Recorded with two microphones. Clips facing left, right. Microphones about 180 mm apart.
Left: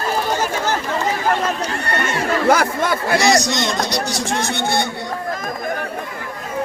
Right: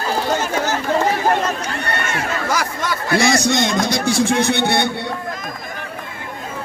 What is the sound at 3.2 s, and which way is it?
Speech, 55° right (ahead or behind).